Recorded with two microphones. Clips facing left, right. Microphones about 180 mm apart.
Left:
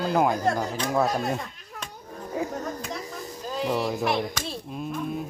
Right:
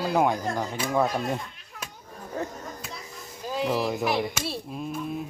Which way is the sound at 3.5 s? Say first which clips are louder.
Even; 5° right (ahead or behind).